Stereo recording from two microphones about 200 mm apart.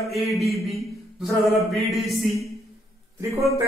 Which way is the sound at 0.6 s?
Centre (ahead or behind).